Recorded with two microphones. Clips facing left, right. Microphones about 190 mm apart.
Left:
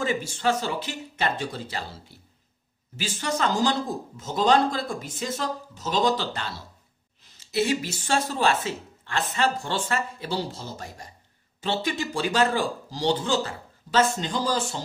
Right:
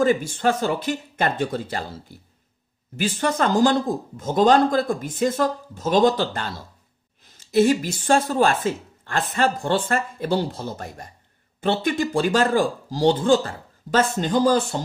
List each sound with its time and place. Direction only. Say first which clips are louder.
0.0 s speech: right 6 dB; 50° right (ahead or behind)